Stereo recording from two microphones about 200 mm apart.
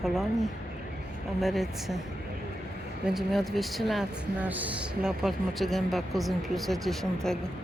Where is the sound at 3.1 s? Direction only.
Centre (ahead or behind).